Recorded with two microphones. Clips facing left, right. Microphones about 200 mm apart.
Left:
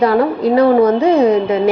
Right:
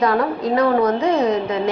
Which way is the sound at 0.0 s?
30° left (ahead or behind).